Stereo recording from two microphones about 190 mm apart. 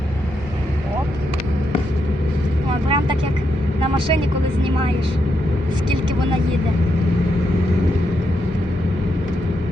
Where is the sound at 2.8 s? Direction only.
25° right (ahead or behind).